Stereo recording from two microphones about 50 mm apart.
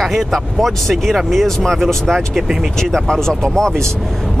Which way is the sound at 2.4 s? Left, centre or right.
Centre.